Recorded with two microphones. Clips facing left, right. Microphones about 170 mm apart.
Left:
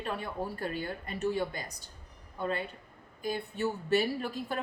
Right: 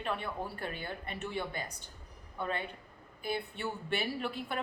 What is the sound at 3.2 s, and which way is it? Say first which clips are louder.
A woman's voice: left 4 dB; 40° left (ahead or behind).